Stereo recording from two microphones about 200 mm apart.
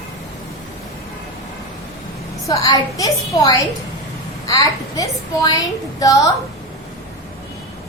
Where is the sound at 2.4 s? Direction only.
15° left (ahead or behind).